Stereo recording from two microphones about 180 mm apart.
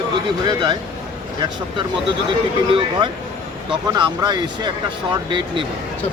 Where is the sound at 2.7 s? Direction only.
30° right (ahead or behind).